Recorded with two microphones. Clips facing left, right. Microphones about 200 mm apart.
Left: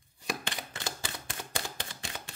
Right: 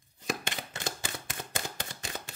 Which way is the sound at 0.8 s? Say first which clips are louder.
Right 3 dB; 20° right (ahead or behind).